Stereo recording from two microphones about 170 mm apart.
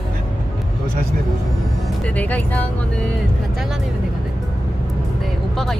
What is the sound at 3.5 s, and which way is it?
Speech, centre (ahead or behind).